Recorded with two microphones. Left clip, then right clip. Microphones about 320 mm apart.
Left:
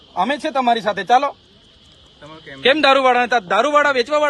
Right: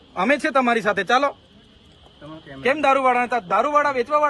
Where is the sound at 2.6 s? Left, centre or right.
Left.